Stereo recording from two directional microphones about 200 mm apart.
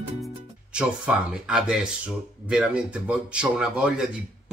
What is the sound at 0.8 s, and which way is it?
Speech, 5° right (ahead or behind).